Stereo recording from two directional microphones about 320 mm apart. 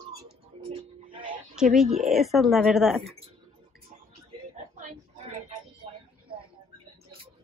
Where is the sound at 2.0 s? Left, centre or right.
Centre.